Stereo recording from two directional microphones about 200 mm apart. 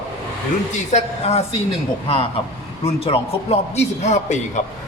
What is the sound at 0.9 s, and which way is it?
A man's voice, 30° left (ahead or behind).